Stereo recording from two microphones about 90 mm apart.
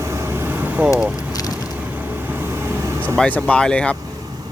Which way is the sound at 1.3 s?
45° left (ahead or behind).